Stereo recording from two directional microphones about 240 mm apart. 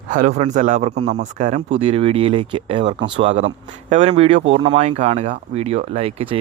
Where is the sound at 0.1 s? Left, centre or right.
Right.